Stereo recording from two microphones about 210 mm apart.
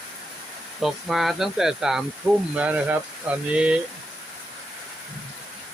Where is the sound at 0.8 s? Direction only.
Centre (ahead or behind).